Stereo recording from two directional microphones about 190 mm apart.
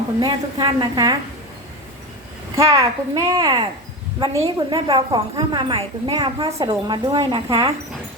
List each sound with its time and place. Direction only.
0.2 s a woman's voice: 25° right (ahead or behind)
2.6 s a woman's voice: 20° right (ahead or behind)